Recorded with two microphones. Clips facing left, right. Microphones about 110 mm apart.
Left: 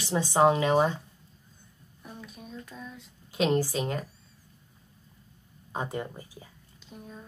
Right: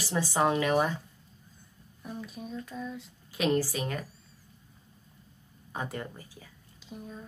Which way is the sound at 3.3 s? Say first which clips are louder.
Left 2 dB; 25° left (ahead or behind).